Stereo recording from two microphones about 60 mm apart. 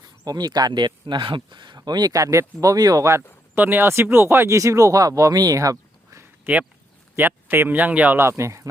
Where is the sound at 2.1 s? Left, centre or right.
Right.